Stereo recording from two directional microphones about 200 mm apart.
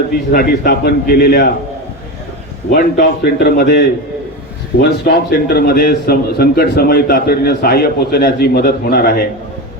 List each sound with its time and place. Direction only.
0.3 s a man's voice: 45° left (ahead or behind)
2.7 s a man's voice: 50° left (ahead or behind)